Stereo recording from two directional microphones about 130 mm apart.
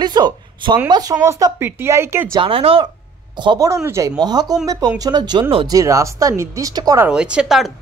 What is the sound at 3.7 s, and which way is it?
Speech, 25° right (ahead or behind).